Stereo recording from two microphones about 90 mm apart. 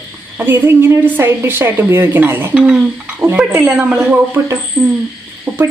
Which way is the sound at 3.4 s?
10° right (ahead or behind).